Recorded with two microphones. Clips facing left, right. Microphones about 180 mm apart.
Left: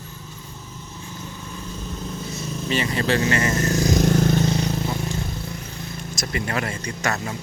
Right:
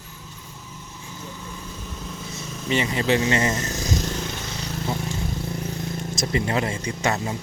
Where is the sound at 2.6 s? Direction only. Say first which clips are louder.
Right 1 dB; 20° right (ahead or behind).